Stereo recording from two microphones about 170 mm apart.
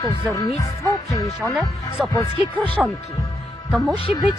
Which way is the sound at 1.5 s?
Centre (ahead or behind).